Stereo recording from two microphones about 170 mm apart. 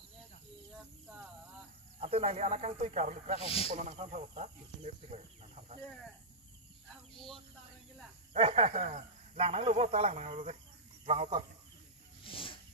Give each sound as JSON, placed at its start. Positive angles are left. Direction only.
{"t": 2.0, "sound": "speech", "side_deg": -35}
{"t": 3.3, "sound": "speech", "side_deg": 35}
{"t": 4.0, "sound": "speech", "side_deg": -40}
{"t": 7.2, "sound": "speech", "side_deg": 0}
{"t": 8.3, "sound": "speech", "side_deg": -35}
{"t": 12.2, "sound": "wild animals", "side_deg": 30}